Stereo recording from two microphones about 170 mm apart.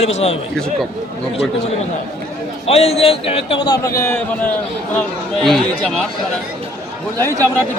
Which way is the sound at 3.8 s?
15° left (ahead or behind).